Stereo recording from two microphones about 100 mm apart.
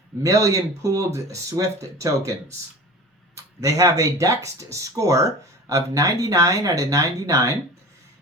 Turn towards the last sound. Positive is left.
turn(degrees=-30)  # may be behind; listen again after turning